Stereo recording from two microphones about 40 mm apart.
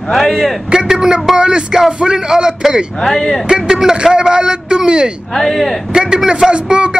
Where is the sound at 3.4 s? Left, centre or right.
Centre.